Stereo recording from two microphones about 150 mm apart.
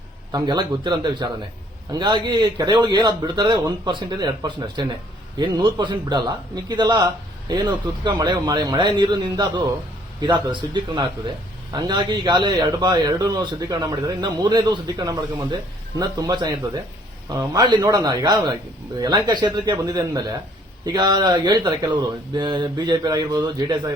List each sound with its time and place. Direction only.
0.3 s a man's voice: 30° right (ahead or behind)